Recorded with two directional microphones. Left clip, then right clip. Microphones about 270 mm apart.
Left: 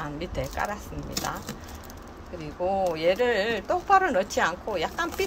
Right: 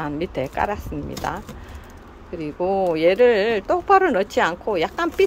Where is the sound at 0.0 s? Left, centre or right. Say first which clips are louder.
Right 7 dB; centre.